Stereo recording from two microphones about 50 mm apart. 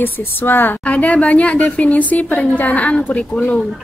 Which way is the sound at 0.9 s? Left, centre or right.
Left.